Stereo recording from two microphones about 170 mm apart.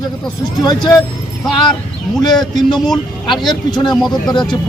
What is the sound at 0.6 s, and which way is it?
A man's voice, 25° left (ahead or behind).